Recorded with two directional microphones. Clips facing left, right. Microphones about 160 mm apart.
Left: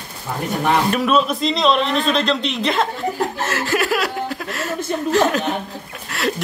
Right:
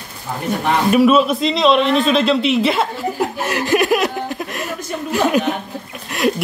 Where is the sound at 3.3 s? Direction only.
15° right (ahead or behind).